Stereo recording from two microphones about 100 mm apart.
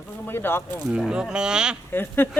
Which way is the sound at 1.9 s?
20° left (ahead or behind).